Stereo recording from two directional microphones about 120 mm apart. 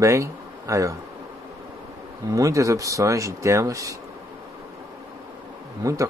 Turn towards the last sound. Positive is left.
turn(degrees=-30)  # may be behind; listen again after turning